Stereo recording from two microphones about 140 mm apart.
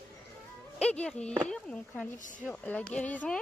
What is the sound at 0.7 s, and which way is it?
Speech, 5° left (ahead or behind).